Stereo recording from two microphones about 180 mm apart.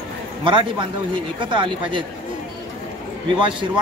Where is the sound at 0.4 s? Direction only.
25° right (ahead or behind).